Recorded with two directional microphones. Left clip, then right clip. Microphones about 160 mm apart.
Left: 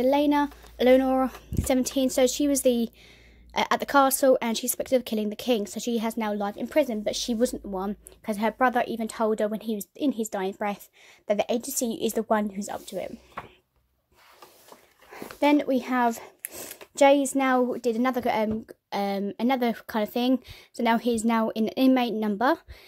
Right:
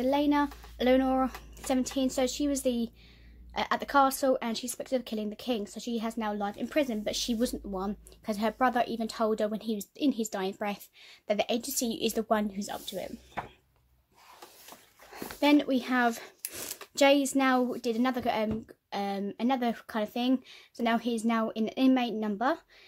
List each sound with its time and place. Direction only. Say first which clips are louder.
0.0 s a woman's voice: left 5 dB; 40° left (ahead or behind)
15.0 s speech: left 3 dB; 30° left (ahead or behind); by 22.6 s 50° left (ahead or behind)